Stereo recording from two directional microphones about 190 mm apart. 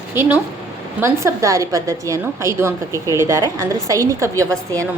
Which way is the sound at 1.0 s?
15° right (ahead or behind).